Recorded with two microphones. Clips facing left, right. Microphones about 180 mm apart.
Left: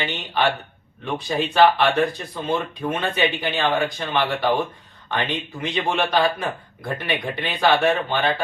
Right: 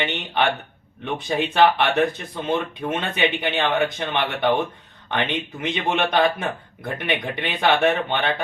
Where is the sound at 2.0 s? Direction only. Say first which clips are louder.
Right 1 dB; 20° right (ahead or behind).